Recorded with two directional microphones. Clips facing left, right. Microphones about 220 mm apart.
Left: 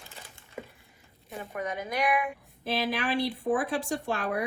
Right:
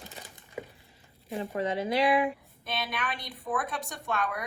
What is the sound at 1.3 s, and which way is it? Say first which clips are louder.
Speech: right 4 dB; 25° right (ahead or behind).